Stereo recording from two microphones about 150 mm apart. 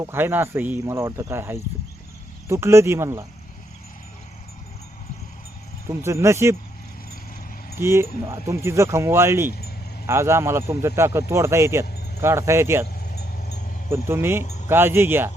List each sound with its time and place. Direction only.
0.0 s speech: 15° right (ahead or behind)
6.0 s speech: 20° right (ahead or behind)
7.8 s speech: 15° right (ahead or behind)
13.9 s speech: 15° right (ahead or behind)